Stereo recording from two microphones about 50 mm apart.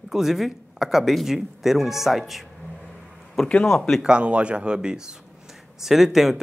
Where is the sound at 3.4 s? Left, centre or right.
Centre.